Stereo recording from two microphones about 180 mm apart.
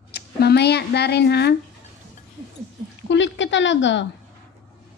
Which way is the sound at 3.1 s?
90° left.